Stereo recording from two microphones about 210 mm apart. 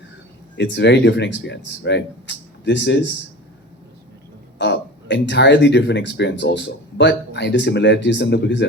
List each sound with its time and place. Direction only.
0.5 s speech: 55° left (ahead or behind)
4.5 s speech: 55° left (ahead or behind)